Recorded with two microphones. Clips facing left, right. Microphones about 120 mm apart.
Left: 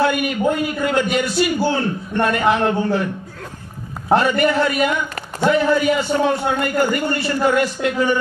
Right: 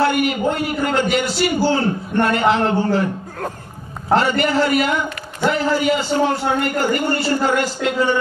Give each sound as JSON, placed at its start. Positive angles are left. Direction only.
{"t": 0.0, "sound": "a man's voice", "side_deg": -25}
{"t": 4.2, "sound": "a man's voice", "side_deg": -25}